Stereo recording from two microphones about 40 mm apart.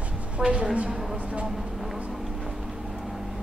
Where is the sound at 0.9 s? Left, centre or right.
Centre.